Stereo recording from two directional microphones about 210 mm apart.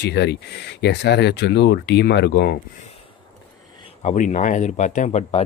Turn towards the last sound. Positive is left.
turn(degrees=30)  # may be behind; listen again after turning